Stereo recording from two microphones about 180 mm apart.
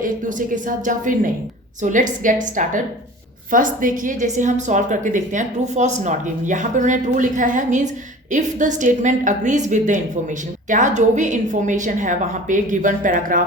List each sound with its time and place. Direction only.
0.0 s a woman's voice: 45° right (ahead or behind)